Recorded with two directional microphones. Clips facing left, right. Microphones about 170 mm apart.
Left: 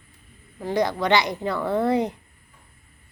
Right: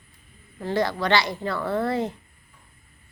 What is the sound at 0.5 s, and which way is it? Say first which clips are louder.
Speech: left 1 dB; 15° left (ahead or behind).